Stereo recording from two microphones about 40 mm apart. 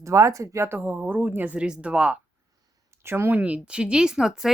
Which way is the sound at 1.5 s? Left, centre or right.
Right.